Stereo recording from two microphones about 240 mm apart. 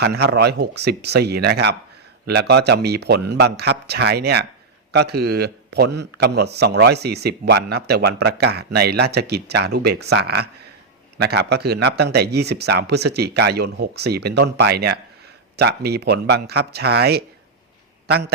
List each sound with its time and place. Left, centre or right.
0.0 s a man's voice: right